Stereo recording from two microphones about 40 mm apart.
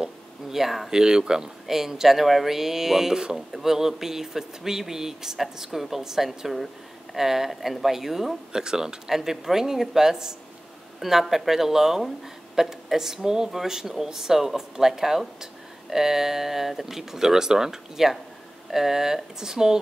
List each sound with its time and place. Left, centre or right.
0.5 s speech: centre
0.9 s speech: centre